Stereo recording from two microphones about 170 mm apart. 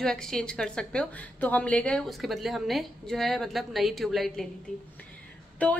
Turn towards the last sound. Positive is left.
turn(degrees=10)  # may be behind; listen again after turning